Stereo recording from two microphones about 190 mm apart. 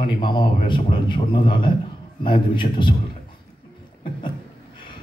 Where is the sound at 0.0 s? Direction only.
25° left (ahead or behind).